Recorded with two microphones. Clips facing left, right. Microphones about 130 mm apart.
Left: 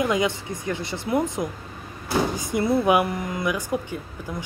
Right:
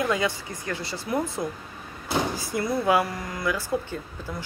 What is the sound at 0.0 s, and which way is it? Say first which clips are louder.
Speech: left 3 dB; 20° left (ahead or behind).